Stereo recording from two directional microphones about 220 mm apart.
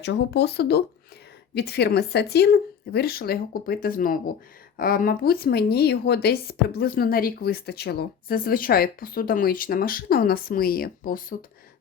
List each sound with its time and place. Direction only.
0.0 s speech: 50° left (ahead or behind)